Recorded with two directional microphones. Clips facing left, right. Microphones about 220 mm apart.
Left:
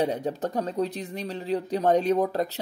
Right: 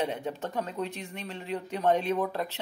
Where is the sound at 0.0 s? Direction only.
40° left (ahead or behind).